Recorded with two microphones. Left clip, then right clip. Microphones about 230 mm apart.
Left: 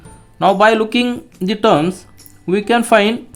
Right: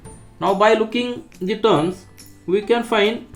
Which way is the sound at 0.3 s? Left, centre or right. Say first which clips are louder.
Left 4 dB; left.